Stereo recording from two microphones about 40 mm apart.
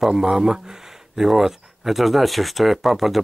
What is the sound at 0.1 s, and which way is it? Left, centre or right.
Speech, centre.